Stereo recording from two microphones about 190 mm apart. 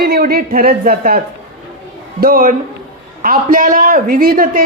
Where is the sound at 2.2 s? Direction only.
50° right (ahead or behind).